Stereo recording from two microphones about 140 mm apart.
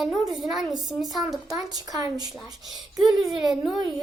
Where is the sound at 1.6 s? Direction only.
25° right (ahead or behind).